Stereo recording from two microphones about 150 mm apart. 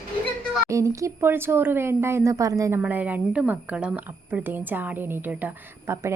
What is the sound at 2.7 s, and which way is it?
A woman's voice, 10° right (ahead or behind).